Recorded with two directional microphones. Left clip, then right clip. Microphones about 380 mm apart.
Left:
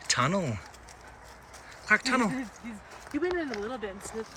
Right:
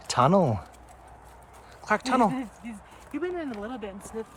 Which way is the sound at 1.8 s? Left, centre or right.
Centre.